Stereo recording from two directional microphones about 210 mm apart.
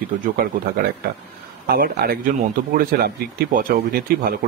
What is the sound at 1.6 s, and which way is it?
Speech, 45° right (ahead or behind).